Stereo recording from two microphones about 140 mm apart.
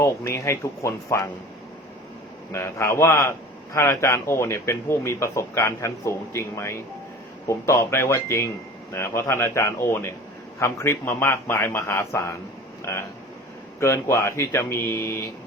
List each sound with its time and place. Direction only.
0.0 s a man's voice: 20° left (ahead or behind)
2.5 s a man's voice: 20° left (ahead or behind)